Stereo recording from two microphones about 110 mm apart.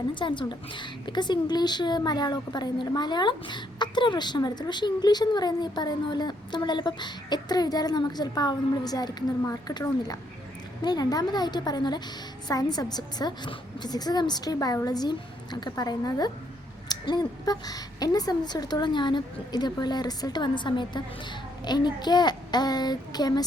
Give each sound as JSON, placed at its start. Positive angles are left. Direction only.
{"t": 0.1, "sound": "a woman's voice", "side_deg": 45}